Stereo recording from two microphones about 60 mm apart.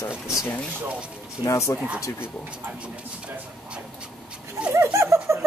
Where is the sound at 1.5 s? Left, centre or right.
Left.